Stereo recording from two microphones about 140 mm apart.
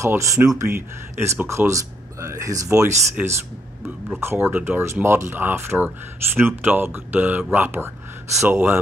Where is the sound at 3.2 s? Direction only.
10° right (ahead or behind).